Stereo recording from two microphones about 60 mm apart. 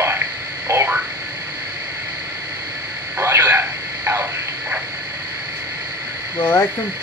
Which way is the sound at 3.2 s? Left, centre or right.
Right.